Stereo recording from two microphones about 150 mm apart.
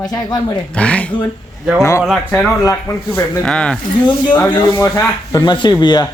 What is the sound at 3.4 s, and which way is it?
Speech, 5° left (ahead or behind).